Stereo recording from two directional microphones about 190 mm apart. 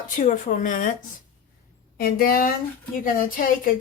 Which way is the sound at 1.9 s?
50° left (ahead or behind).